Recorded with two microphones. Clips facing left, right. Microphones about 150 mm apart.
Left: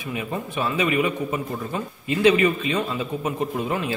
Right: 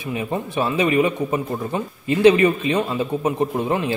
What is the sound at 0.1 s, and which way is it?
A man's voice, 30° right (ahead or behind).